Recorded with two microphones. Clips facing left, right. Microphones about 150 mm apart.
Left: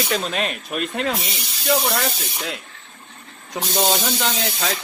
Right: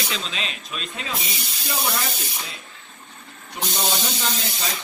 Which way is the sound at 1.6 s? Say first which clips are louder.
Left 7 dB; 70° left (ahead or behind).